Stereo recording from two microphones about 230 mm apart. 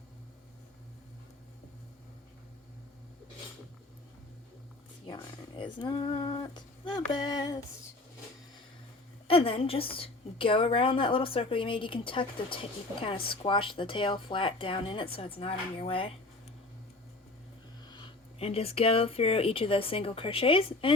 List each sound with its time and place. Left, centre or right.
5.0 s speech: centre
9.2 s a woman's voice: left
18.3 s a woman's voice: left